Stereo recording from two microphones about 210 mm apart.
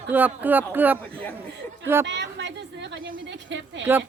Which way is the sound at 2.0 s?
55° right (ahead or behind).